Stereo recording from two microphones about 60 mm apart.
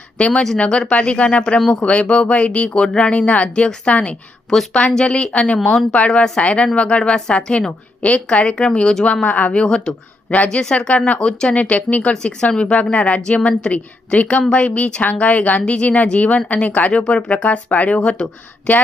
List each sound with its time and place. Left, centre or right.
0.2 s speech: centre
4.4 s a woman's voice: centre; by 12.1 s left
12.1 s speech: centre